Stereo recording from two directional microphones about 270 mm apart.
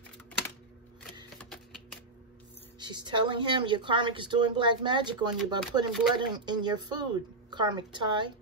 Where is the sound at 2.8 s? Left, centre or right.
Centre.